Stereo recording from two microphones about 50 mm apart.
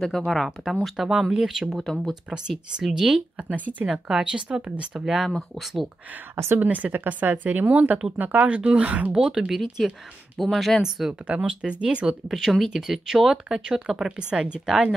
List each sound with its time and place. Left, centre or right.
0.1 s speech: centre
0.8 s speech: centre
3.3 s speech: right
3.9 s speech: centre
5.0 s speech: centre
6.3 s speech: right
6.6 s speech: right
9.1 s speech: centre
10.8 s speech: centre
11.2 s speech: right
12.3 s speech: centre
14.7 s speech: centre